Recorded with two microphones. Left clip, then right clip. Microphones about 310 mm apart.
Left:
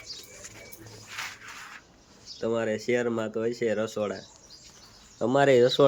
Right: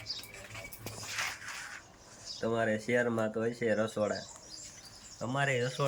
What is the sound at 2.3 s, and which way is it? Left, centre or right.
Speech, centre.